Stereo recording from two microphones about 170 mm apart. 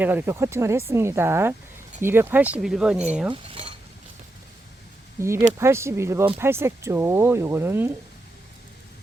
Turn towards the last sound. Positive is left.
turn(degrees=-15)  # may be behind; listen again after turning